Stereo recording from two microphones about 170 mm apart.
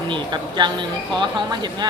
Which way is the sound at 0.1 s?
25° right (ahead or behind).